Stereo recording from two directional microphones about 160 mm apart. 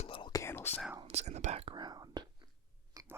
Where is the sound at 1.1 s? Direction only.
45° right (ahead or behind).